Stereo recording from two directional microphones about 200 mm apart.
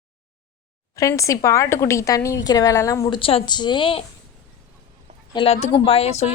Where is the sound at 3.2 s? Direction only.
25° left (ahead or behind).